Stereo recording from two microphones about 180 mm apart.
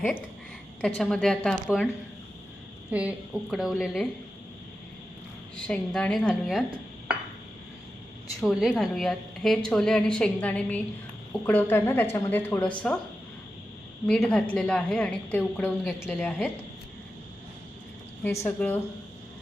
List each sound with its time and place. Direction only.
0.8 s a woman's voice: 5° left (ahead or behind)
2.9 s a woman's voice: 5° right (ahead or behind)
5.6 s a woman's voice: 5° left (ahead or behind)
8.4 s a woman's voice: centre (ahead or behind)
14.1 s a woman's voice: 5° left (ahead or behind)
18.2 s speech: 15° left (ahead or behind)